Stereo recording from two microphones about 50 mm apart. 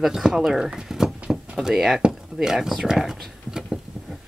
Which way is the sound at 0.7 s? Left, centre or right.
Centre.